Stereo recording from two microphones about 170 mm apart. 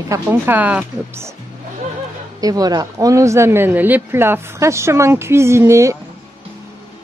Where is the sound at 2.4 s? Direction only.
20° right (ahead or behind).